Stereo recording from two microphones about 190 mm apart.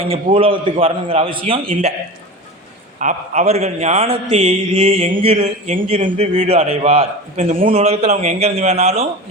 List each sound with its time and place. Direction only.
0.0 s a man's voice: 30° right (ahead or behind)
3.0 s a man's voice: 40° right (ahead or behind)